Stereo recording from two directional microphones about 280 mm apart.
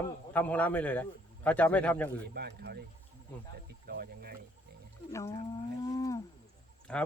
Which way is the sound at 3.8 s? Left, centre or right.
Right.